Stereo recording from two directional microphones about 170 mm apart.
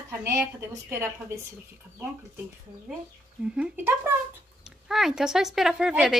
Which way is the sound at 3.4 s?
5° right (ahead or behind).